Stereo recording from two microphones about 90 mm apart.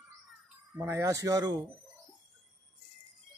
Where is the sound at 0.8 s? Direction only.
30° right (ahead or behind).